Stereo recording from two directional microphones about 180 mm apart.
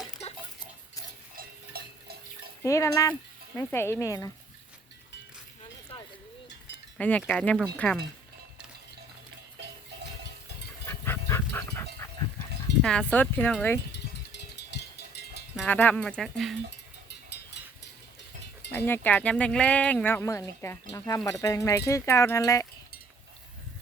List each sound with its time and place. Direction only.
1.7 s water: 60° right (ahead or behind)
2.6 s speech: 15° left (ahead or behind)
7.0 s speech: 10° left (ahead or behind)
10.8 s duck: 15° left (ahead or behind)
12.8 s speech: 5° left (ahead or behind)
13.9 s a sound: 70° left (ahead or behind)
15.5 s speech: 10° left (ahead or behind)
18.7 s speech: 10° left (ahead or behind)